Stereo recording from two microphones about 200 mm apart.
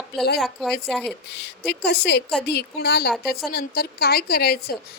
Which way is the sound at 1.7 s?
55° left (ahead or behind).